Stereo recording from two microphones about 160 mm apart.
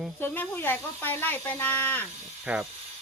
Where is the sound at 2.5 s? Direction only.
10° right (ahead or behind).